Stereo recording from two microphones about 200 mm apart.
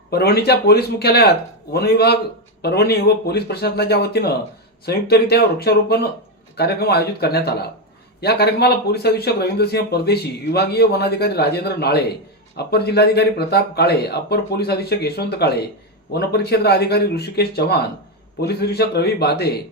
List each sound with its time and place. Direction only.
0.1 s speech: 50° left (ahead or behind)